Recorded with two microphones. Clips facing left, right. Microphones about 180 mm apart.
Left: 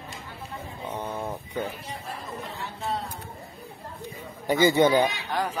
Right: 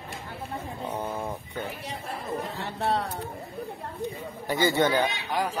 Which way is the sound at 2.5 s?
70° right (ahead or behind).